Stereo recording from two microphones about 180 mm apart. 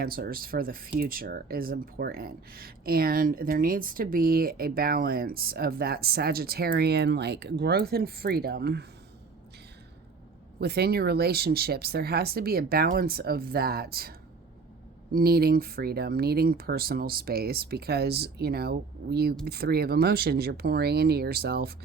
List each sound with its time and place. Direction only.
0.0 s speech: 55° right (ahead or behind)
10.6 s speech: 65° right (ahead or behind)
15.1 s speech: 60° right (ahead or behind)